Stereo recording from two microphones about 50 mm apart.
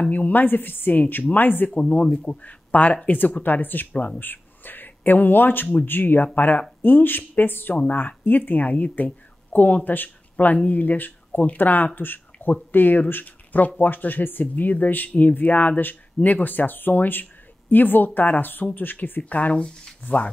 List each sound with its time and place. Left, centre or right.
0.1 s speech: left
1.7 s speech: left
2.4 s speech: left